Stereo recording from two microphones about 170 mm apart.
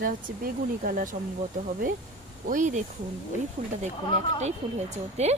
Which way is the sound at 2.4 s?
50° right (ahead or behind).